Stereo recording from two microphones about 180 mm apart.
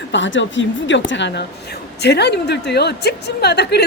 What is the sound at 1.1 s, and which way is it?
A woman's voice, 75° left (ahead or behind).